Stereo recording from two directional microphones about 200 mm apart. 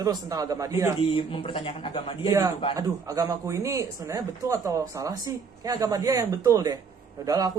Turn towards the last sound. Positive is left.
turn(degrees=-20)  # may be behind; listen again after turning